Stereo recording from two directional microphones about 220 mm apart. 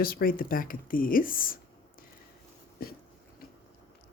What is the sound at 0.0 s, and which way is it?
Speech, 40° left (ahead or behind).